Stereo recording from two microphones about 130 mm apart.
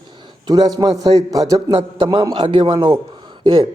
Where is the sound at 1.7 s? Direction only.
40° right (ahead or behind).